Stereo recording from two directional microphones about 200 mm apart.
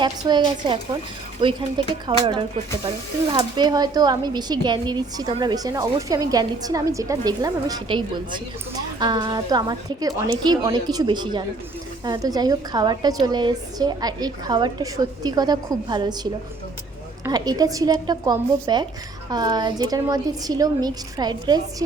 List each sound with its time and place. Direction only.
0.0 s speech: 20° right (ahead or behind)
2.0 s speech: 25° right (ahead or behind)